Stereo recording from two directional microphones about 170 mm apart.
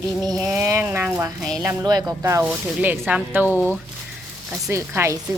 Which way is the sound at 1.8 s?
25° right (ahead or behind).